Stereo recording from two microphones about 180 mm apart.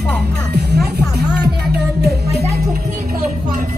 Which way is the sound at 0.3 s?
60° right (ahead or behind).